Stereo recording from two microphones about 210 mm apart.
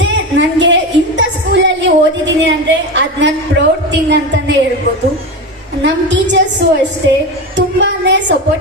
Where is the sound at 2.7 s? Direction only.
60° right (ahead or behind).